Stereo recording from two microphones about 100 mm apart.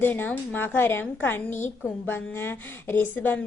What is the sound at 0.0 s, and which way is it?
A woman's voice, 20° left (ahead or behind).